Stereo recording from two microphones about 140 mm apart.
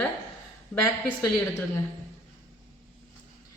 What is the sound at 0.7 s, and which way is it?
Speech, 5° right (ahead or behind).